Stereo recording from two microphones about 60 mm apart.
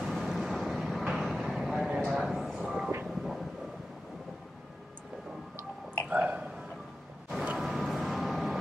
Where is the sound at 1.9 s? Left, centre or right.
Centre.